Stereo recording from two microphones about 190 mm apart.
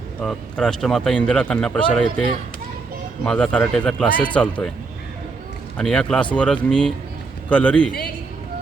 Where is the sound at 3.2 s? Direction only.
5° left (ahead or behind).